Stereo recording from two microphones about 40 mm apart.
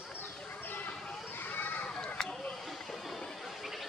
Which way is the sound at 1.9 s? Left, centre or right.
Centre.